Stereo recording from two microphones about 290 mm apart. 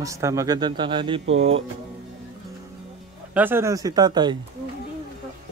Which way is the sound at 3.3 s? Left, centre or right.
Centre.